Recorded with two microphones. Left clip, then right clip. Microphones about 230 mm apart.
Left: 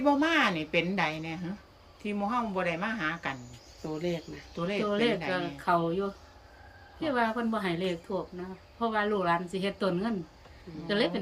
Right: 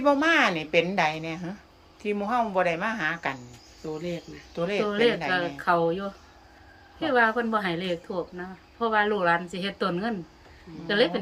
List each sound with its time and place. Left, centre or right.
0.0 s a woman's voice: centre
3.8 s speech: centre
4.5 s a woman's voice: centre